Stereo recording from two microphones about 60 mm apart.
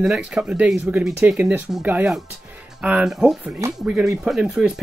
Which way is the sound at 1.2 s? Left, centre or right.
Right.